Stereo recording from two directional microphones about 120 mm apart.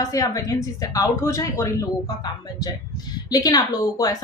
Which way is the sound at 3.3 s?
30° left (ahead or behind).